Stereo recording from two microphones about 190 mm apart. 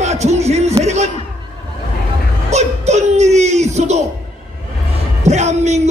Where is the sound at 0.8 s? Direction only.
35° right (ahead or behind).